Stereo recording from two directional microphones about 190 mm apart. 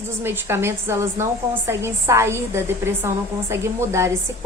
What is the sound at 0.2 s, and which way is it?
Speech, 10° right (ahead or behind).